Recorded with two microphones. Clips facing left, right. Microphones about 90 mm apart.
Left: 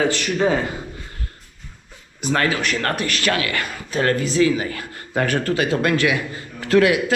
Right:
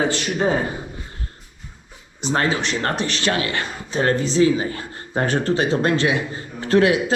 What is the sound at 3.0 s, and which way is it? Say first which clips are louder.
Speech: even; 55° left (ahead or behind).